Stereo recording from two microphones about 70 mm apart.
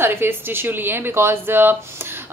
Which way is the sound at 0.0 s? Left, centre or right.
Right.